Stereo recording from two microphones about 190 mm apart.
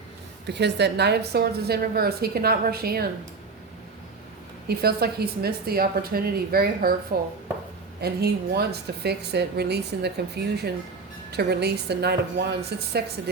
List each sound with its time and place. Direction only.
0.4 s a woman's voice: 65° right (ahead or behind)
4.8 s a woman's voice: 55° right (ahead or behind)
8.0 s a woman's voice: 55° right (ahead or behind)